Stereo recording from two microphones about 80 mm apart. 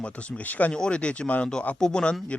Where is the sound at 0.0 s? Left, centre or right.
Centre.